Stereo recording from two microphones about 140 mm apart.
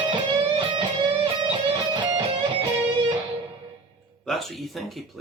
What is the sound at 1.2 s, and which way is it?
Music, 35° right (ahead or behind).